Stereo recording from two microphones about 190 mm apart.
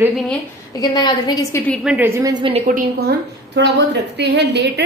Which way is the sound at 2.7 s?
50° right (ahead or behind).